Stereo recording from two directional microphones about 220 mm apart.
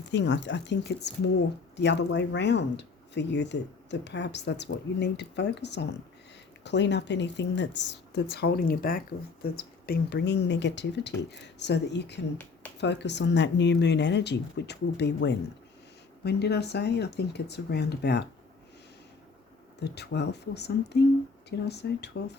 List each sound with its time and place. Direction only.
0.1 s a woman's voice: 55° left (ahead or behind)
19.8 s a woman's voice: 50° left (ahead or behind)